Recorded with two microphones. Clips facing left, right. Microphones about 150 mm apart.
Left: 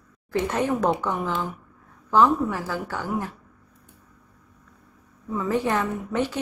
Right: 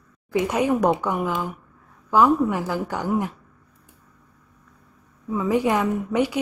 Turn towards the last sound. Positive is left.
turn(degrees=-10)  # may be behind; listen again after turning